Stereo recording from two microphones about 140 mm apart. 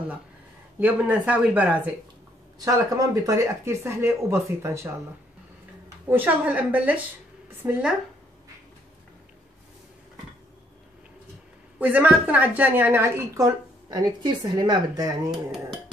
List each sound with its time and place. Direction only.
0.7 s speech: 10° right (ahead or behind)
2.6 s a woman's voice: 25° right (ahead or behind)
6.0 s speech: 10° right (ahead or behind)
11.8 s a woman's voice: 10° right (ahead or behind); by 15.1 s 30° right (ahead or behind)